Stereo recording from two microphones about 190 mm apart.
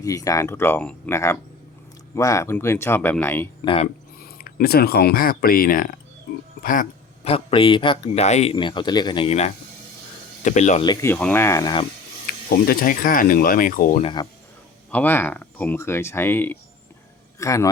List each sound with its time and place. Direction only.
0.0 s speech: 15° left (ahead or behind)
3.6 s speech: 25° left (ahead or behind)
4.2 s speech: 50° left (ahead or behind)
7.3 s speech: 30° left (ahead or behind)
10.8 s speech: 10° left (ahead or behind)
12.6 s speech: 50° left (ahead or behind)
14.0 s speech: 25° left (ahead or behind)
14.8 s speech: 10° left (ahead or behind)